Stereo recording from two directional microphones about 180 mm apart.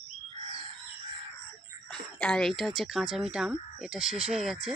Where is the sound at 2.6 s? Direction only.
Centre (ahead or behind).